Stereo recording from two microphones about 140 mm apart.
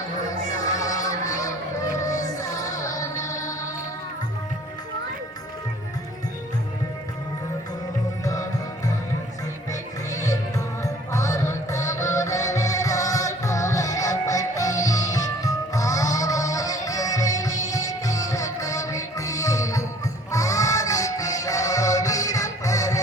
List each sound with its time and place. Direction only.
0.6 s a sound: 25° left (ahead or behind)
8.2 s music: 25° left (ahead or behind)
10.1 s music: 20° left (ahead or behind)